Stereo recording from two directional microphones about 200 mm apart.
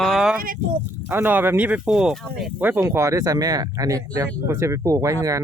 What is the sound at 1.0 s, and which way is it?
Speech, 10° right (ahead or behind).